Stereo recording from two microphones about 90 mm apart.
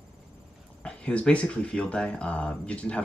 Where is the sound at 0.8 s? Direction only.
10° left (ahead or behind).